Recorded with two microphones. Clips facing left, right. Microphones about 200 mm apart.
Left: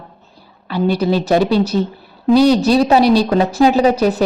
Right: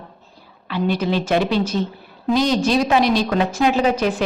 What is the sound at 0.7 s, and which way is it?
A woman's voice, 40° left (ahead or behind).